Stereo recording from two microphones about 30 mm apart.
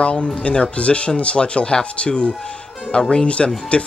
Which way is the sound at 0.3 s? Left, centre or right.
Left.